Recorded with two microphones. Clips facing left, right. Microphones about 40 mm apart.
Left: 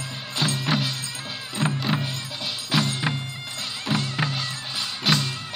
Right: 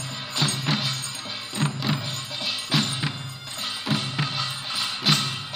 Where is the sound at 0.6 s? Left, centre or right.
Centre.